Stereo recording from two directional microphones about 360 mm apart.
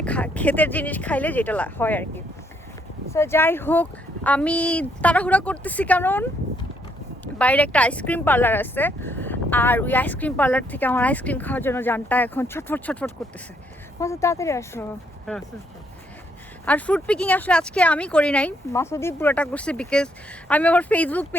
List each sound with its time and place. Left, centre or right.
0.0 s speech: centre
7.3 s speech: centre
16.6 s speech: centre